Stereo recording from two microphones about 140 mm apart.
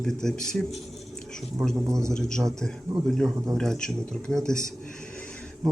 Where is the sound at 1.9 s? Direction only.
20° right (ahead or behind).